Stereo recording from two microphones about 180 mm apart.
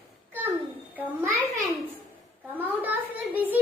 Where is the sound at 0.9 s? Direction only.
10° right (ahead or behind).